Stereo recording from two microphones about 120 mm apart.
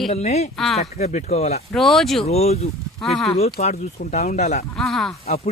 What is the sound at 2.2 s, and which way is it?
Speech, 60° left (ahead or behind).